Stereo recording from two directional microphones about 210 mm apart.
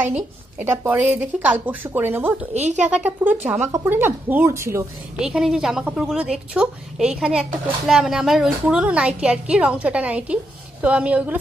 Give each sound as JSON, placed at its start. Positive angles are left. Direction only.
{"t": 0.6, "sound": "a woman's voice", "side_deg": -10}
{"t": 2.5, "sound": "speech", "side_deg": -35}
{"t": 3.0, "sound": "a woman's voice", "side_deg": -10}
{"t": 5.2, "sound": "a woman's voice", "side_deg": -5}